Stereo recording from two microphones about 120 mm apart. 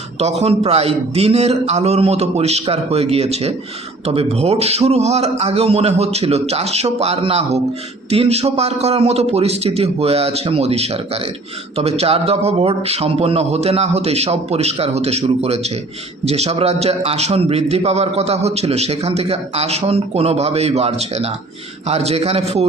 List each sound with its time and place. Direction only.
0.2 s a man's voice: 60° right (ahead or behind)